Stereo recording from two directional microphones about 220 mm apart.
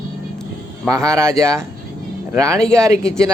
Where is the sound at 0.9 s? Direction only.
15° right (ahead or behind).